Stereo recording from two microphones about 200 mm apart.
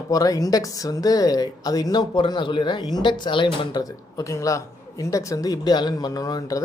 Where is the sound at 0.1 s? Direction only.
15° left (ahead or behind).